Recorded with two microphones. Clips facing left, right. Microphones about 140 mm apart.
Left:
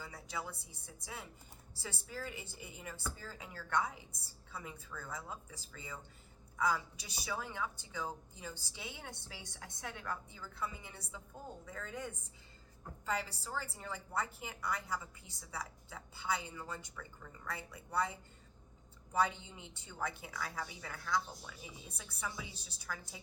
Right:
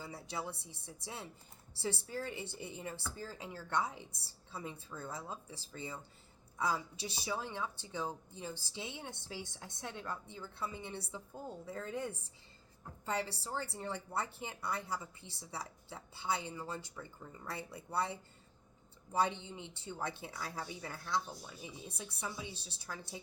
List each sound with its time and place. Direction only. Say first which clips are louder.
0.0 s a woman's voice: right 2 dB; 25° right (ahead or behind)